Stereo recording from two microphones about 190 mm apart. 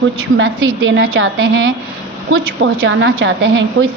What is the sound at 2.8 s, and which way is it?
Speech, 90° right.